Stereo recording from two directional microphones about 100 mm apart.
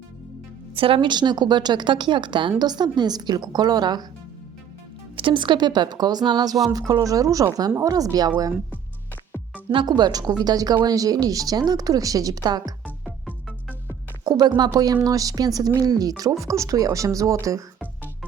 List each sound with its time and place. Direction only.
0.8 s a woman's voice: 65° right (ahead or behind); by 4.0 s 40° right (ahead or behind)
5.1 s a woman's voice: 55° right (ahead or behind); by 8.3 s 40° right (ahead or behind)
9.7 s speech: 45° right (ahead or behind)
14.3 s a woman's voice: 45° right (ahead or behind)